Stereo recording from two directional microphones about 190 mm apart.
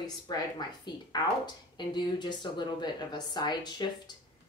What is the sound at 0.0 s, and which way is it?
A woman's voice, 20° left (ahead or behind).